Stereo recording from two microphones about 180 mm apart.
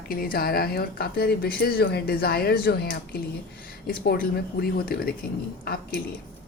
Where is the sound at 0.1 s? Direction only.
55° left (ahead or behind).